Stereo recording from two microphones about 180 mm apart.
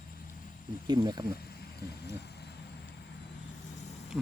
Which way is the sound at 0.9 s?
25° right (ahead or behind).